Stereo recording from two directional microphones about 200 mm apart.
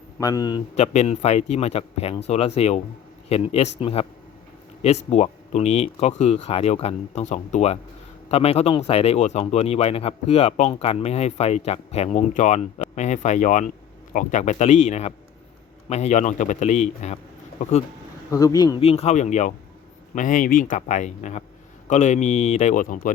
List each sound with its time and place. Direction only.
0.2 s speech: 20° left (ahead or behind)
0.8 s speech: 35° left (ahead or behind)
18.3 s speech: 15° left (ahead or behind); by 23.1 s 40° left (ahead or behind)